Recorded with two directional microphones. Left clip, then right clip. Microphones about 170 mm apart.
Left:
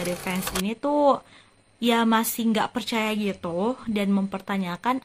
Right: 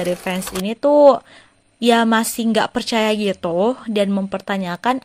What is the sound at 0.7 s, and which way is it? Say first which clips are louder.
Speech: right 10 dB; 35° right (ahead or behind).